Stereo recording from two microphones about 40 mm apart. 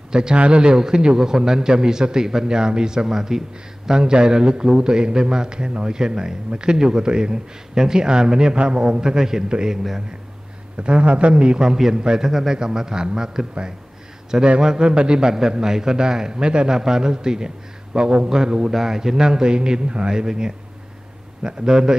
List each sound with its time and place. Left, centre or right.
0.1 s a man's voice: centre
10.8 s a man's voice: right
11.7 s a man's voice: centre